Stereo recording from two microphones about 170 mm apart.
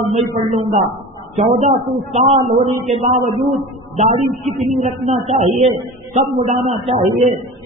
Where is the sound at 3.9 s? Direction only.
40° right (ahead or behind).